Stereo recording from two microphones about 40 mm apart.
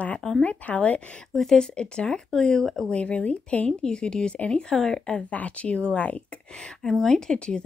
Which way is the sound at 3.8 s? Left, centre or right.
Centre.